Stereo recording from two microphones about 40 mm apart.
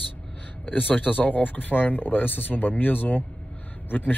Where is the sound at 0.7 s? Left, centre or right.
Left.